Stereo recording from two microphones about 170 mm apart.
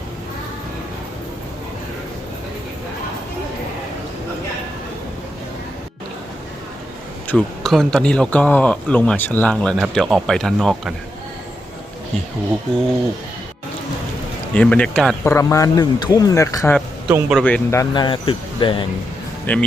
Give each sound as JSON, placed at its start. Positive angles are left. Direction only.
{"t": 7.3, "sound": "speech", "side_deg": 5}
{"t": 14.5, "sound": "speech", "side_deg": 5}
{"t": 17.1, "sound": "a man's voice", "side_deg": -5}
{"t": 17.4, "sound": "speech", "side_deg": 15}
{"t": 19.5, "sound": "speech", "side_deg": 10}